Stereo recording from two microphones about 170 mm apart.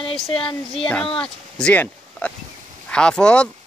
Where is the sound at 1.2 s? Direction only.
5° left (ahead or behind).